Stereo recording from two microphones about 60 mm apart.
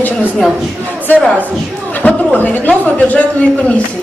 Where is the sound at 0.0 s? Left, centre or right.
Left.